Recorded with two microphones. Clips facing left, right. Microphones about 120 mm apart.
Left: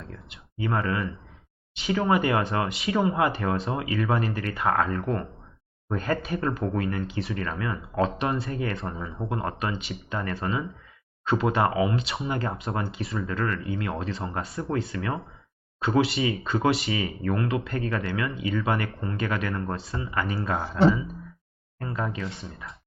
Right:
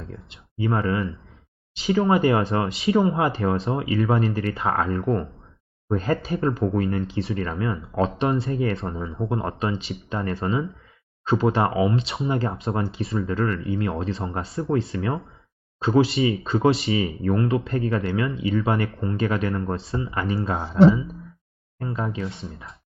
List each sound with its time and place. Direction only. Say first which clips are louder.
0.0 s speech: right 3 dB; 25° right (ahead or behind)
20.7 s speech: right 6 dB; centre (ahead or behind)
21.8 s speech: right 3 dB; 20° right (ahead or behind)